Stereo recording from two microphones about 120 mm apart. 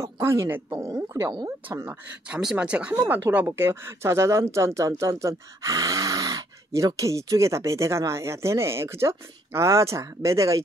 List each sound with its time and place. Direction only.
0.0 s speech: 25° right (ahead or behind)
1.9 s speech: 10° right (ahead or behind); by 10.6 s 25° right (ahead or behind)